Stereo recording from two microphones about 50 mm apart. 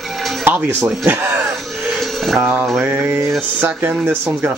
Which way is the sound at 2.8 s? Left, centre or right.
Right.